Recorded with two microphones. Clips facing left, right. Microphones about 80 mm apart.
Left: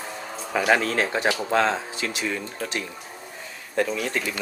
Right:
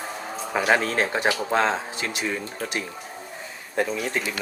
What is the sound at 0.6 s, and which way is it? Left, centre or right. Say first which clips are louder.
Speech: even; right.